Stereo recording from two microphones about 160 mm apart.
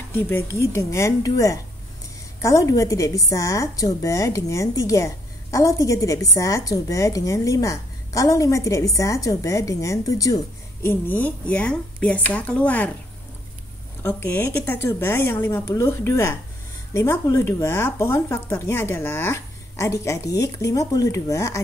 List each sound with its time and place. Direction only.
0.1 s a woman's voice: 15° left (ahead or behind)
14.0 s speech: 10° left (ahead or behind)